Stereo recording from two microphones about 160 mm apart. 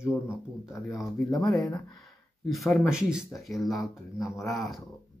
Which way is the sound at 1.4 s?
5° left (ahead or behind).